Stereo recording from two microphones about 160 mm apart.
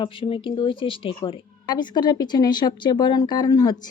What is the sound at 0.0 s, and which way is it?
A woman's voice, 30° left (ahead or behind).